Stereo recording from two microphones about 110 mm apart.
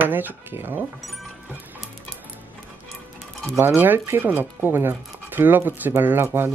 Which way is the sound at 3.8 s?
20° right (ahead or behind).